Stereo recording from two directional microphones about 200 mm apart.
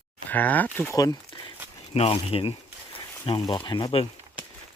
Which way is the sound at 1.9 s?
30° left (ahead or behind).